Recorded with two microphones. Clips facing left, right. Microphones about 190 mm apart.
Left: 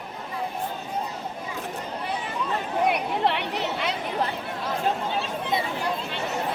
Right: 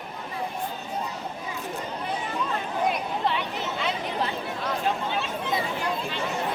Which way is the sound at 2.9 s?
65° left (ahead or behind).